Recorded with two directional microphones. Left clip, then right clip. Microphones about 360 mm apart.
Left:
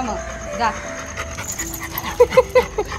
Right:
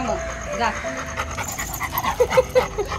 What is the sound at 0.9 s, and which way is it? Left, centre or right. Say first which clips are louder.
Dog: right 1 dB; centre.